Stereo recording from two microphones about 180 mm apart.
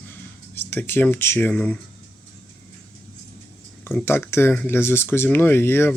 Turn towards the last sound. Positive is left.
turn(degrees=15)  # may be behind; listen again after turning